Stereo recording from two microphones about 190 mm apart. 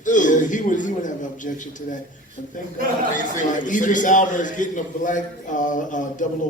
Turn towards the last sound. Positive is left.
turn(degrees=40)  # may be behind; listen again after turning